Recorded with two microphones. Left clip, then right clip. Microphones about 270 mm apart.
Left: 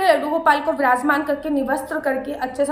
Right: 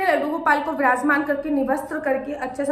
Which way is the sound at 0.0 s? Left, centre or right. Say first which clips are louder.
Left 4 dB; centre.